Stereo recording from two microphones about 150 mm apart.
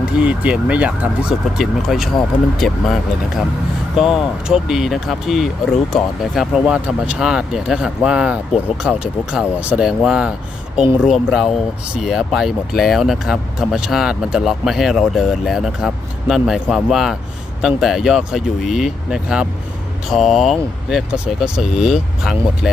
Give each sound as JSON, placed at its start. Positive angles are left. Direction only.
{"t": 0.0, "sound": "speech", "side_deg": -10}